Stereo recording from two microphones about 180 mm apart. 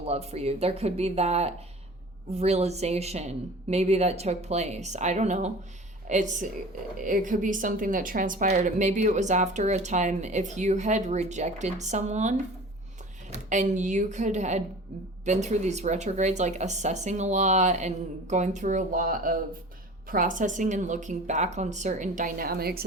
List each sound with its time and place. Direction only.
0.0 s a woman's voice: 35° right (ahead or behind); by 22.8 s 60° right (ahead or behind)